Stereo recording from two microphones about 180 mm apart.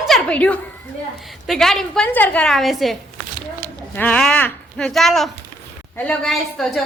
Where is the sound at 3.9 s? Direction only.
10° left (ahead or behind).